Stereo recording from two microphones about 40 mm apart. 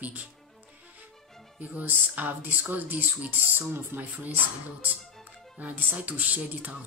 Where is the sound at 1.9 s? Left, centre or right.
Right.